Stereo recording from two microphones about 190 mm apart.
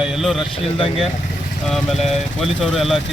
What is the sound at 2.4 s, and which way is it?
Speech, centre (ahead or behind).